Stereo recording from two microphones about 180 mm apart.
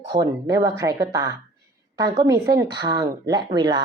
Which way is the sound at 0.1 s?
20° right (ahead or behind).